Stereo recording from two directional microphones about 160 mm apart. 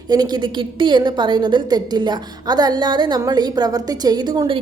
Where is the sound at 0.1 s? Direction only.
25° right (ahead or behind).